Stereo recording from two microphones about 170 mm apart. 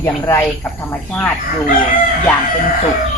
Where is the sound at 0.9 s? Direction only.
10° left (ahead or behind).